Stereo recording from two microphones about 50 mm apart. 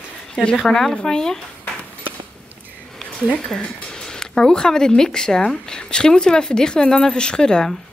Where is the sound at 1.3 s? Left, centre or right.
Left.